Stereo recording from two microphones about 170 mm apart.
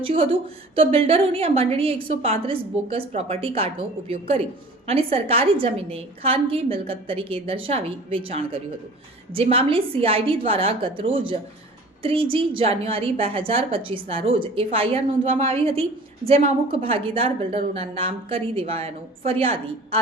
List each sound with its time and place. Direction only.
0.0 s a woman's voice: 35° right (ahead or behind)
4.9 s a woman's voice: 35° right (ahead or behind)